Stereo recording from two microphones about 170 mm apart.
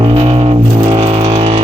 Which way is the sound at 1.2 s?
30° right (ahead or behind).